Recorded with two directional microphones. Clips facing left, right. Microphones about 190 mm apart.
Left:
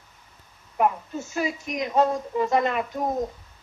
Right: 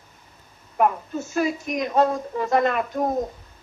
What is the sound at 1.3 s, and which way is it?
Speech, 15° left (ahead or behind).